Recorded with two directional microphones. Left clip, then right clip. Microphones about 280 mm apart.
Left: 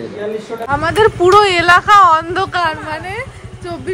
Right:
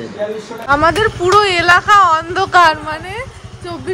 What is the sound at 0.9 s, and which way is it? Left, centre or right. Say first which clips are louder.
Speech: left 3 dB; centre.